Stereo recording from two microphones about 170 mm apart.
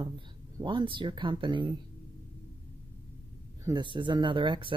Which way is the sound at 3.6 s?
25° right (ahead or behind).